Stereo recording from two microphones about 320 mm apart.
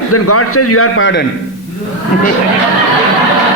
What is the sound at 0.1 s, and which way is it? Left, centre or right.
A man's voice, left.